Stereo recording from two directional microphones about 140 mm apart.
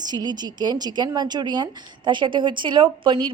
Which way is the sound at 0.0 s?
30° right (ahead or behind).